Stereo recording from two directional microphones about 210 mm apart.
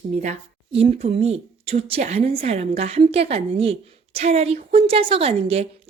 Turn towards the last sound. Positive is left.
turn(degrees=-30)  # may be behind; listen again after turning